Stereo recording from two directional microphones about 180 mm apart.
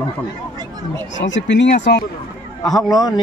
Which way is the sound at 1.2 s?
90° left.